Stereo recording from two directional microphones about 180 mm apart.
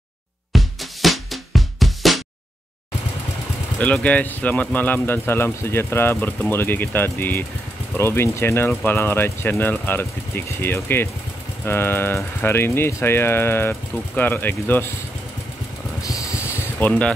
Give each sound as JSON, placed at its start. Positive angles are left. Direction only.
{"t": 0.5, "sound": "music", "side_deg": 0}
{"t": 3.8, "sound": "speech", "side_deg": 5}
{"t": 16.0, "sound": "a sound", "side_deg": 20}
{"t": 16.8, "sound": "speech", "side_deg": 10}